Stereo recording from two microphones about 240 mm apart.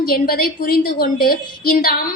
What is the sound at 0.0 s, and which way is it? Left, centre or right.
A woman's voice, left.